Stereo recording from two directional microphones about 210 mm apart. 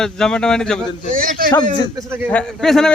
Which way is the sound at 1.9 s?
10° right (ahead or behind).